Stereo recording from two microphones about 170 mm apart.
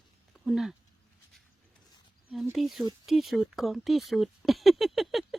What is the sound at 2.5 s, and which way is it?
Speech, centre (ahead or behind).